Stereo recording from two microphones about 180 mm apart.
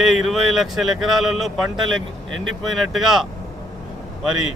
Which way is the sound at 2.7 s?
Centre (ahead or behind).